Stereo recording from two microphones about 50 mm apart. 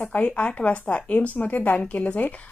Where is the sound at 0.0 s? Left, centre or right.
Left.